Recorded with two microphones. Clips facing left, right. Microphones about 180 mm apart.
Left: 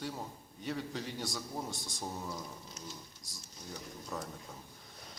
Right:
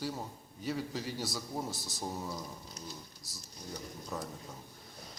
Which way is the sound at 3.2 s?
5° right (ahead or behind).